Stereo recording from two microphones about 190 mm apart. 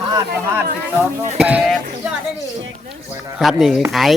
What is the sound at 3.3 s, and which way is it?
Speech, centre (ahead or behind).